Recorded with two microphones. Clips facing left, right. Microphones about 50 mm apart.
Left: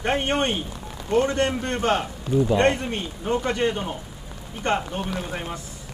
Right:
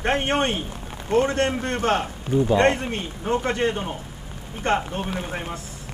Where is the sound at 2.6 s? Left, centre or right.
Right.